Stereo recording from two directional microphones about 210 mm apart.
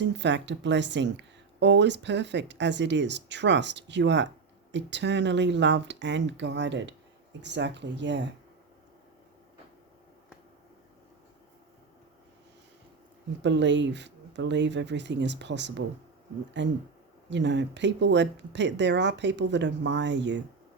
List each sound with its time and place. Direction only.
0.0 s speech: 55° right (ahead or behind)
13.4 s speech: 55° right (ahead or behind)